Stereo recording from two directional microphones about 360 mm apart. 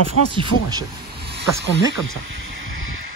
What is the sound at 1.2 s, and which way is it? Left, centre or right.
Speech, right.